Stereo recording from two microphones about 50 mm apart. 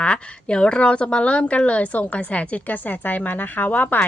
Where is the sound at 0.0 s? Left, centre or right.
Left.